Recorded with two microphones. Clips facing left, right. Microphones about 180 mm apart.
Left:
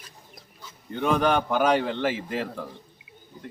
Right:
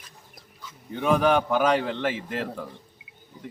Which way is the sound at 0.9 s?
5° right (ahead or behind).